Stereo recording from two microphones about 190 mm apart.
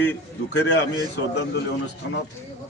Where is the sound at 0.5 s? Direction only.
65° left (ahead or behind).